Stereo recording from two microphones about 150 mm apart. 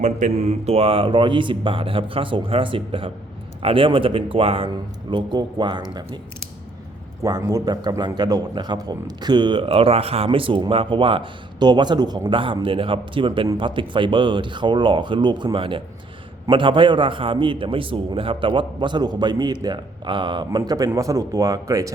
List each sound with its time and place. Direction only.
0.0 s a man's voice: 50° right (ahead or behind); by 5.8 s 30° right (ahead or behind)
7.2 s a man's voice: 25° right (ahead or behind)